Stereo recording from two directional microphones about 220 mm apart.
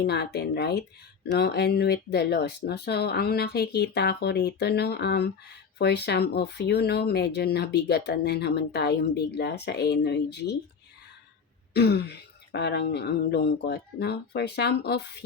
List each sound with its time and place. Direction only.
0.0 s speech: 45° left (ahead or behind)
11.7 s speech: 45° left (ahead or behind)